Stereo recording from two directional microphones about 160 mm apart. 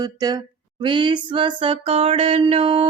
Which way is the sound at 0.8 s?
30° right (ahead or behind).